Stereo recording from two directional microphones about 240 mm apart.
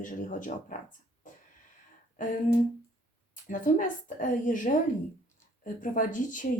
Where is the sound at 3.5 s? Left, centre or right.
Left.